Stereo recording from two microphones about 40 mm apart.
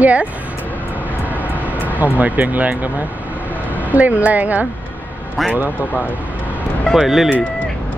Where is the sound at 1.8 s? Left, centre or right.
Right.